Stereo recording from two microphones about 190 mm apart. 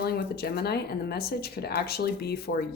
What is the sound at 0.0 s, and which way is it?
A woman's voice, 55° left (ahead or behind).